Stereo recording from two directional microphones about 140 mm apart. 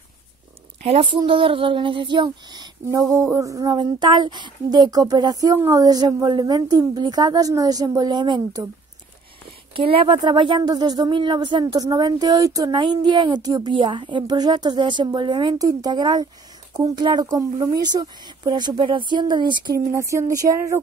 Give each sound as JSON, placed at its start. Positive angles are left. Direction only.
{"t": 0.8, "sound": "speech", "side_deg": -40}
{"t": 9.8, "sound": "speech", "side_deg": -40}
{"t": 19.9, "sound": "speech", "side_deg": -20}